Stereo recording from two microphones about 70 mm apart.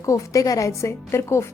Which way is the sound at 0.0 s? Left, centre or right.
Left.